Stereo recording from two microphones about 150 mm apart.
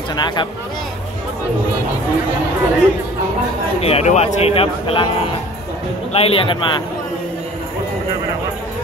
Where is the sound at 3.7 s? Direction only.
45° left (ahead or behind).